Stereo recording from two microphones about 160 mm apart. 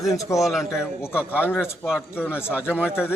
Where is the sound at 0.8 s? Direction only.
15° left (ahead or behind).